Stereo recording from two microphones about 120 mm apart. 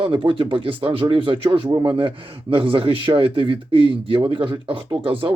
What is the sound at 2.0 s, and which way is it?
Speech, 50° right (ahead or behind).